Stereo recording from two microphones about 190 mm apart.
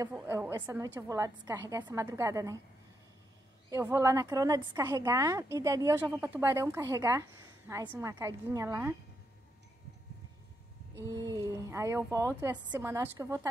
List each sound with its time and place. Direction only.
0.1 s a woman's voice: 10° right (ahead or behind)
3.7 s a woman's voice: 15° right (ahead or behind)
11.1 s a woman's voice: 15° right (ahead or behind)